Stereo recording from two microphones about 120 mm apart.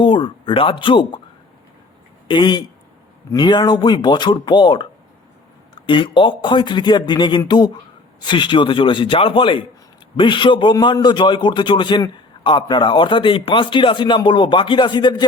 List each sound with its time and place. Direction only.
0.0 s a man's voice: 45° left (ahead or behind)
2.2 s a man's voice: 40° left (ahead or behind)